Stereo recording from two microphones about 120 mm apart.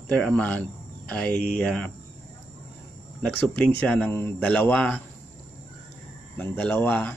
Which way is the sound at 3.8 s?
15° left (ahead or behind).